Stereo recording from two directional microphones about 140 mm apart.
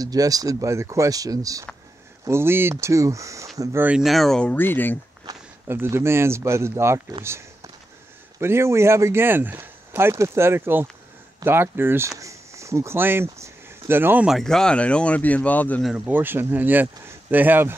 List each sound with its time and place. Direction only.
0.0 s speech: 25° right (ahead or behind)
3.8 s speech: 5° right (ahead or behind); by 4.9 s 15° left (ahead or behind)
5.7 s speech: 15° right (ahead or behind)
7.2 s a sound: 20° right (ahead or behind)
8.4 s speech: 20° right (ahead or behind)
12.2 s a sound: 20° right (ahead or behind)
14.3 s speech: 5° left (ahead or behind)
16.1 s speech: 15° right (ahead or behind)